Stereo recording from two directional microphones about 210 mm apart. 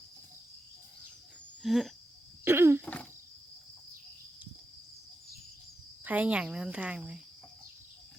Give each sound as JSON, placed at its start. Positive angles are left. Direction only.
{"t": 1.6, "sound": "speech", "side_deg": 0}
{"t": 2.4, "sound": "throat clearing", "side_deg": -10}
{"t": 2.8, "sound": "speech", "side_deg": 5}
{"t": 6.1, "sound": "speech", "side_deg": -5}